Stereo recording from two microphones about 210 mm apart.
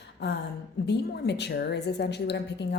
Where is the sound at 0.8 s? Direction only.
55° left (ahead or behind).